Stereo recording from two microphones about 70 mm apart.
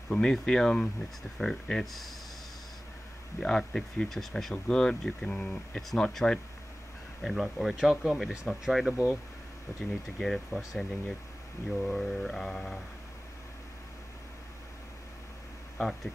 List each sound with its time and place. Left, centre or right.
0.1 s speech: centre
3.3 s speech: centre
7.7 s speech: centre
9.7 s speech: left
10.1 s speech: centre
15.8 s speech: centre